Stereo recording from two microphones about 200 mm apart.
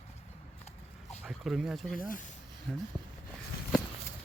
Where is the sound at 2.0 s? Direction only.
45° left (ahead or behind).